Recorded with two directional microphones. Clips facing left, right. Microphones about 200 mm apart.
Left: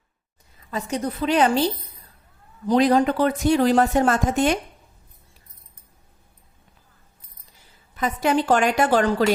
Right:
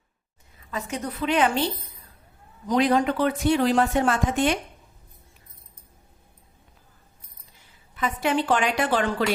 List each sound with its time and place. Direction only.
0.7 s speech: 35° left (ahead or behind)
7.9 s a woman's voice: 40° left (ahead or behind)